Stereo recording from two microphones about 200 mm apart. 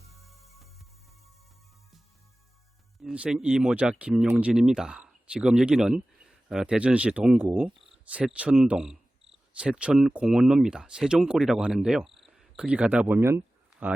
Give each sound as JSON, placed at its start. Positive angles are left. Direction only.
{"t": 0.1, "sound": "music", "side_deg": 0}
{"t": 3.0, "sound": "speech", "side_deg": -5}